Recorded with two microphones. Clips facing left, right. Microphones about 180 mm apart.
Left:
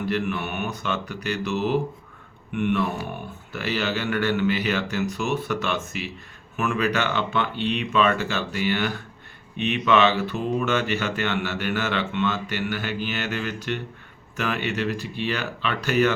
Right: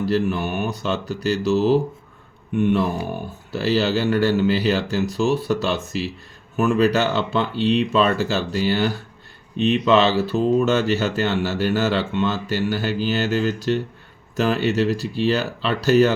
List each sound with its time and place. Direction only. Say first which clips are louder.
0.0 s speech: right 5 dB; 35° right (ahead or behind)